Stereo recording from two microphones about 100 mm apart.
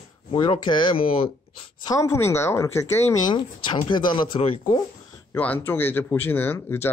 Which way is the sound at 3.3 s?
50° left (ahead or behind).